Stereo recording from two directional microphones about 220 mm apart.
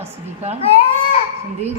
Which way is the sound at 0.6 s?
25° left (ahead or behind).